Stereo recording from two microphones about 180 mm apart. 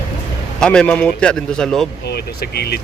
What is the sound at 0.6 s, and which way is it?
Speech, 5° left (ahead or behind).